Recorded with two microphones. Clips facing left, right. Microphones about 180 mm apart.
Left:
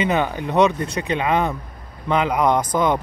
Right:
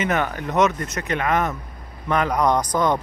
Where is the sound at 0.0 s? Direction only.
20° left (ahead or behind).